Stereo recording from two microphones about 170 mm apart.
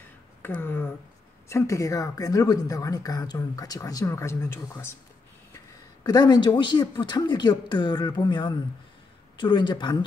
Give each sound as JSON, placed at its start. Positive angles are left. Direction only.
{"t": 0.4, "sound": "speech", "side_deg": 10}
{"t": 6.0, "sound": "speech", "side_deg": 25}